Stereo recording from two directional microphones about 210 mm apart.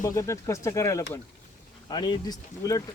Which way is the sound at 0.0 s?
15° left (ahead or behind).